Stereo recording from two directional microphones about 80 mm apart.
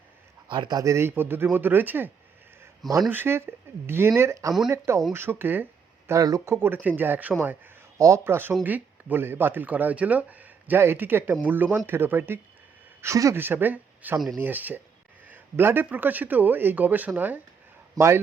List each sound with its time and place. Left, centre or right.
0.4 s speech: right
0.8 s speech: right
3.1 s speech: right
5.1 s speech: right
6.1 s speech: right
7.9 s speech: right
8.2 s speech: right
13.0 s speech: right
13.3 s speech: right
17.9 s a man's voice: right